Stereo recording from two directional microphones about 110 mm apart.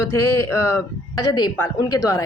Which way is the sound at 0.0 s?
30° left (ahead or behind).